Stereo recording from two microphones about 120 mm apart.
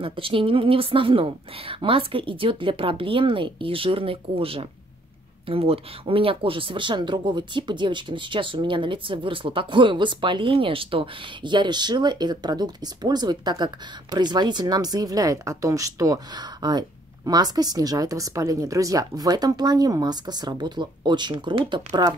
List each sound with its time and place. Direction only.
0.0 s speech: 45° right (ahead or behind)